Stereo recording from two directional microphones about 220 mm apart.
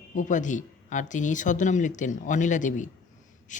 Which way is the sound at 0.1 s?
35° left (ahead or behind).